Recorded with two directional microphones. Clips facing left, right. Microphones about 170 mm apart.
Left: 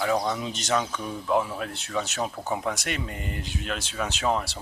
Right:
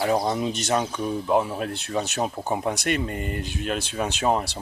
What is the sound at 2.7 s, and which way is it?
Speech, 55° right (ahead or behind).